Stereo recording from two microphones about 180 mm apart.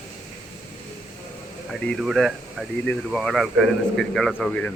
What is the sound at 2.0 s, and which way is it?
Speech, centre (ahead or behind).